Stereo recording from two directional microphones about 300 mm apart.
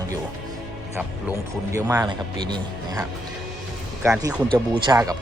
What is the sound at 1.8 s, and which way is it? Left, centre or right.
Speech, centre.